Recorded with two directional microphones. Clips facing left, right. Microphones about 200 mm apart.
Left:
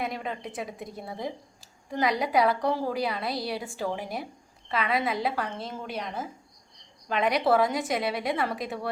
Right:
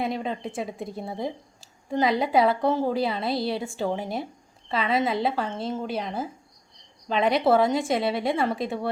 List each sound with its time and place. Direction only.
0.0 s a woman's voice: 30° right (ahead or behind)